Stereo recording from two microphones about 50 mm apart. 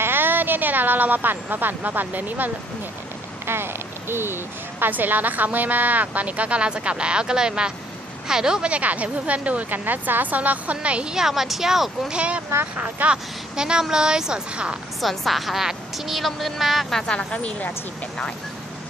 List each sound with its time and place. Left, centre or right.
0.0 s a woman's voice: right
3.4 s speech: right
4.8 s speech: right; by 8.7 s centre
8.7 s speech: right; by 12.1 s centre
12.1 s speech: right
13.6 s speech: centre
15.0 s a woman's voice: centre
17.0 s speech: centre